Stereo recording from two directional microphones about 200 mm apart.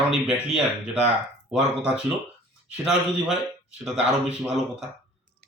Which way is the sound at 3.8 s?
5° right (ahead or behind).